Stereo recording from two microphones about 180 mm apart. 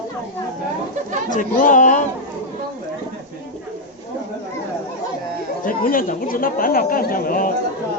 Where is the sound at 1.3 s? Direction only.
45° left (ahead or behind).